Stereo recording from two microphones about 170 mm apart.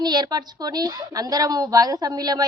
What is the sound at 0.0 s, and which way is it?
A woman's voice, 25° right (ahead or behind).